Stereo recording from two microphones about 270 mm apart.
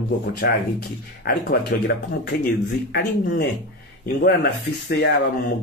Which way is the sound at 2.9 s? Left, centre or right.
Left.